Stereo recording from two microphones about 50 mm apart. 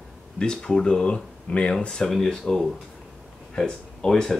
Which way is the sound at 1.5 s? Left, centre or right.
Left.